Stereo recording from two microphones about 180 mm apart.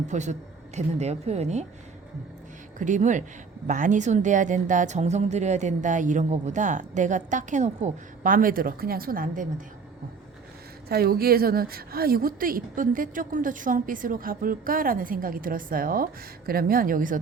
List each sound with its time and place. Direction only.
0.1 s a woman's voice: 40° right (ahead or behind)
2.7 s speech: 45° right (ahead or behind)
10.8 s speech: 60° right (ahead or behind)